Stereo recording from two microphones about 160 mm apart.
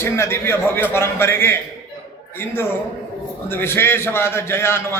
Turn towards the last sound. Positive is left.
turn(degrees=15)  # may be behind; listen again after turning